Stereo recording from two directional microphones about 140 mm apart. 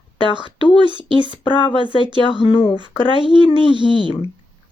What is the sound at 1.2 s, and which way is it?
Speech, 40° left (ahead or behind).